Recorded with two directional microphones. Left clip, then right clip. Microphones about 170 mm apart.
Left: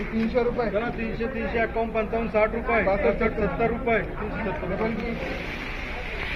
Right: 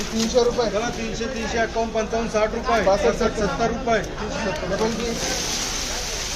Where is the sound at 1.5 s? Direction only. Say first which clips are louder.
Right 3 dB; 25° right (ahead or behind).